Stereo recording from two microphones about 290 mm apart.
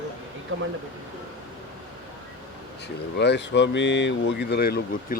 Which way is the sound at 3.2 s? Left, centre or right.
Left.